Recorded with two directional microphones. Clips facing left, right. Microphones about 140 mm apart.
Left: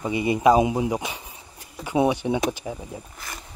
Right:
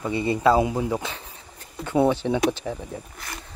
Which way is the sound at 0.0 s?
15° left (ahead or behind).